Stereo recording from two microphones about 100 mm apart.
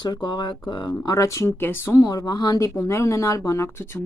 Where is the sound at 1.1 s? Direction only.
30° left (ahead or behind).